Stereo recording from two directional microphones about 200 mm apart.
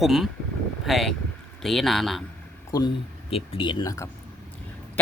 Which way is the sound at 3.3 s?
25° left (ahead or behind).